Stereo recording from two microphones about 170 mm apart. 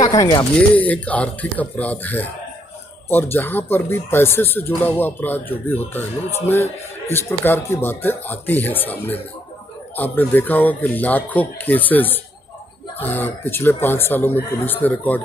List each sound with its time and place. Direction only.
0.1 s speech: 20° left (ahead or behind)
0.6 s speech: 10° left (ahead or behind)